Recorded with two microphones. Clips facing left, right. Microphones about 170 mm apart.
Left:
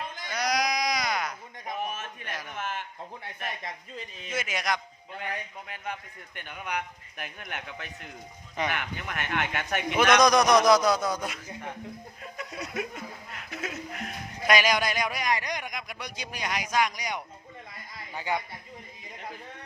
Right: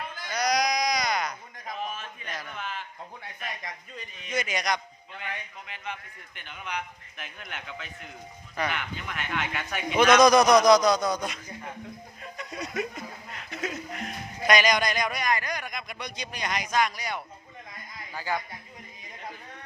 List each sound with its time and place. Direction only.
0.3 s sheep: 5° left (ahead or behind)
1.5 s a sound: 20° left (ahead or behind)
2.0 s a sound: 55° left (ahead or behind)
2.3 s a sound: 10° left (ahead or behind)
3.2 s speech: 30° left (ahead or behind)
4.3 s a man's voice: 5° left (ahead or behind)
5.1 s a man's voice: 40° left (ahead or behind)
8.7 s a man's voice: 50° left (ahead or behind)
9.9 s a man's voice: centre (ahead or behind); by 18.4 s 25° left (ahead or behind)